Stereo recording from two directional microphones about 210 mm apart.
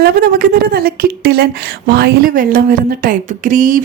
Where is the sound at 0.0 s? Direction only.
45° right (ahead or behind).